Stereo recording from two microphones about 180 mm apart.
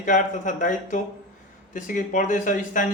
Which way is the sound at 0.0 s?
45° left (ahead or behind).